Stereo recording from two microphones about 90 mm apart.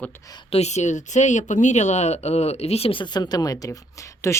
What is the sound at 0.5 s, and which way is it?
Speech, 90° left.